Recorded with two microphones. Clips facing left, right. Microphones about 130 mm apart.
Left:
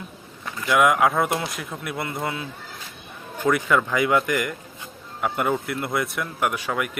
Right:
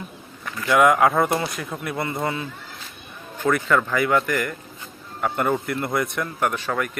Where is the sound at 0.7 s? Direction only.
Centre (ahead or behind).